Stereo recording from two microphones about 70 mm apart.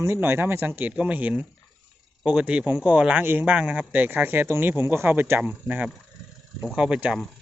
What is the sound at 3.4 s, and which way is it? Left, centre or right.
Speech, centre.